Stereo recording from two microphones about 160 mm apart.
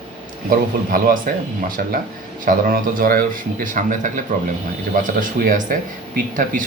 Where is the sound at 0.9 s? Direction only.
65° right (ahead or behind).